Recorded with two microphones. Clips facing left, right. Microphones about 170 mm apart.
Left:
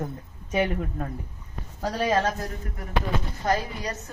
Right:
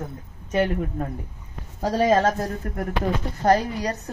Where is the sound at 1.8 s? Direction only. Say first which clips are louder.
Right 5 dB; 45° right (ahead or behind).